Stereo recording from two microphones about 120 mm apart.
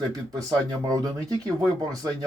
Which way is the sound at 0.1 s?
30° right (ahead or behind).